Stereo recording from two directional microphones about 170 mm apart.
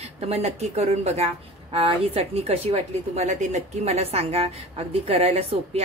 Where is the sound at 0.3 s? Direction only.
40° right (ahead or behind).